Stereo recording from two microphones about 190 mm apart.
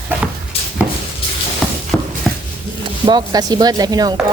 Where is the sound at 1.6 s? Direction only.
Centre (ahead or behind).